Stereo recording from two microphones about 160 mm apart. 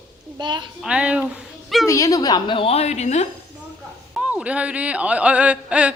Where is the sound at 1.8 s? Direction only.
20° left (ahead or behind); by 3.3 s 45° left (ahead or behind).